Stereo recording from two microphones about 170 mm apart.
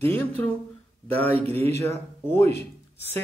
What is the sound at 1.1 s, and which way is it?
Speech, 10° left (ahead or behind).